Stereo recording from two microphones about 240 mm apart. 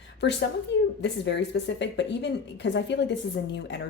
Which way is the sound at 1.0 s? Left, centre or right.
Left.